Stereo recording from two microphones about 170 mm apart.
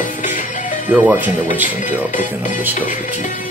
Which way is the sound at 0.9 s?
10° right (ahead or behind).